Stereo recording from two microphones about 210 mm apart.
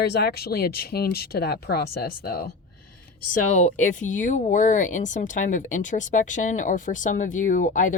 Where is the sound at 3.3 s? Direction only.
35° left (ahead or behind).